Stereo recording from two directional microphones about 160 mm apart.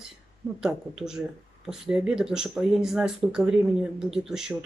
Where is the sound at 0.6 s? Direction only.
5° right (ahead or behind).